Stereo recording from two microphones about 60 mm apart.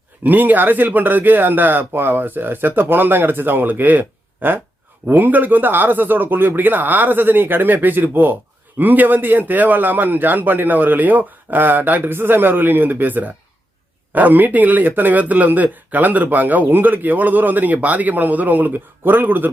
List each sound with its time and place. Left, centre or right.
0.2 s a man's voice: right